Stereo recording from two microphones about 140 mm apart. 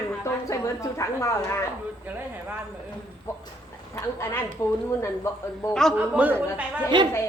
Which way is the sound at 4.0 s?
20° left (ahead or behind).